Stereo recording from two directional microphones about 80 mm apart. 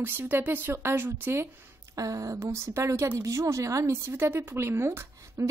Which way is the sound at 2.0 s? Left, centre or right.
Right.